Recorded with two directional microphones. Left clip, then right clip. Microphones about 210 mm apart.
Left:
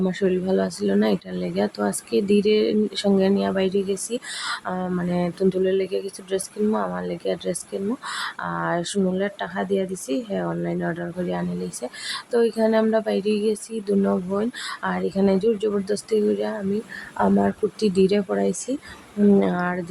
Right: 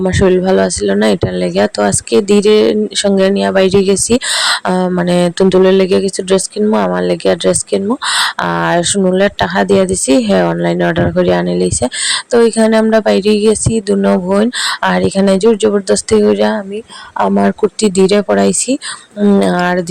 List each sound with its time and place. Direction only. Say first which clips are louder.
0.0 s speech: right 12 dB; 35° right (ahead or behind)